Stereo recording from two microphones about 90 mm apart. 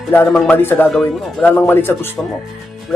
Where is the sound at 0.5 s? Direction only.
25° left (ahead or behind).